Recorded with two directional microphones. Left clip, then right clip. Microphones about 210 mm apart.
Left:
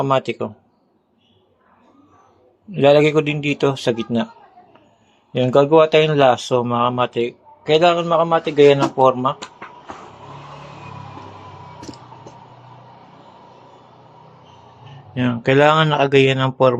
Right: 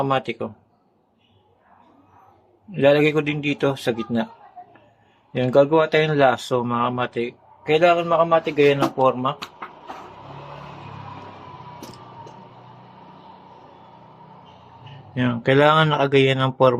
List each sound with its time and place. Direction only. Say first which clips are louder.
0.0 s speech: left 4 dB; 15° left (ahead or behind)
2.7 s speech: left 4 dB; 15° left (ahead or behind)
5.3 s speech: left 3 dB; 10° left (ahead or behind)
9.0 s speech: left 4 dB; 10° left (ahead or behind)
15.1 s speech: left 2 dB; 5° left (ahead or behind)